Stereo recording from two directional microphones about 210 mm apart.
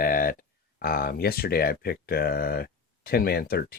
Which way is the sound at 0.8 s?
45° left (ahead or behind).